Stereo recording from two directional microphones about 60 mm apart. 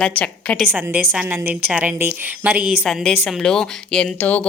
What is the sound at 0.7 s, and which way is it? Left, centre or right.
Speech, right.